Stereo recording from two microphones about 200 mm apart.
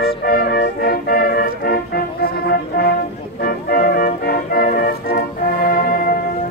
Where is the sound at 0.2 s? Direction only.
50° left (ahead or behind).